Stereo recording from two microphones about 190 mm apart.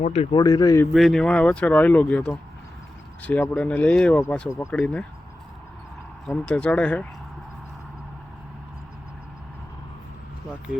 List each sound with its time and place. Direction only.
0.0 s speech: 35° left (ahead or behind)
0.3 s speech: 20° left (ahead or behind)
0.9 s speech: centre (ahead or behind)
6.2 s speech: 5° left (ahead or behind)